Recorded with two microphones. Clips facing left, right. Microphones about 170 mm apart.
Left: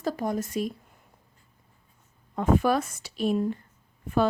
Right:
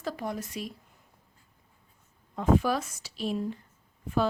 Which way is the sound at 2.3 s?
55° left (ahead or behind).